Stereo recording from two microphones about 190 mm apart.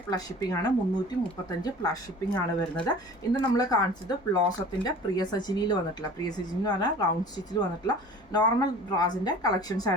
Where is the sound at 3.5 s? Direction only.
20° left (ahead or behind).